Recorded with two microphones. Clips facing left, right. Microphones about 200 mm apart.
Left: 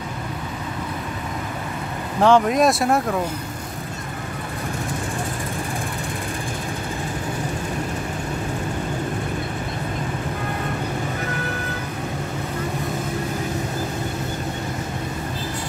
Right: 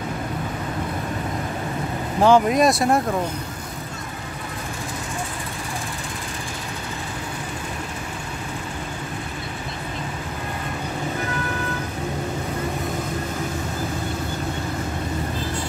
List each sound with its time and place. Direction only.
2.2 s speech: centre (ahead or behind)